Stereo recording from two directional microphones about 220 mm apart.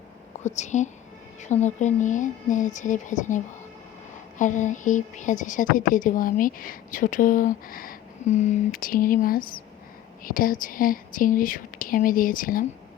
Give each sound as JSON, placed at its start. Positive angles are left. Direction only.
{"t": 0.4, "sound": "a woman's voice", "side_deg": 30}